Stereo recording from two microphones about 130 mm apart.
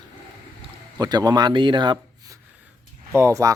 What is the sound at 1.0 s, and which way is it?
Speech, 30° right (ahead or behind).